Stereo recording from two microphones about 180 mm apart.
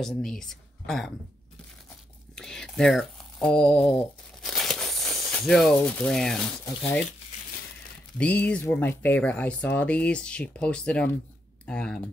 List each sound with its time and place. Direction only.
0.0 s speech: 5° left (ahead or behind)
2.3 s a sound: 5° left (ahead or behind)
6.8 s speech: 5° left (ahead or behind)
8.2 s speech: 5° left (ahead or behind)